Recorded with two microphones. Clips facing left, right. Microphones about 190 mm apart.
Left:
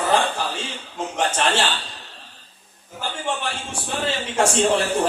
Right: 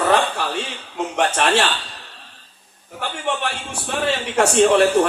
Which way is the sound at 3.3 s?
65° right (ahead or behind).